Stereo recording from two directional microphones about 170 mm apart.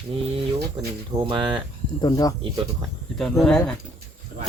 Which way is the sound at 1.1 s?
25° right (ahead or behind).